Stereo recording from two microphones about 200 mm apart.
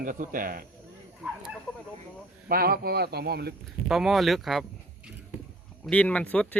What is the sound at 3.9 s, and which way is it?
Speech, centre (ahead or behind).